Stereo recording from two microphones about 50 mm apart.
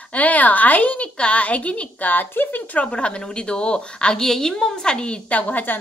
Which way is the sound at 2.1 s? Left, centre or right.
Left.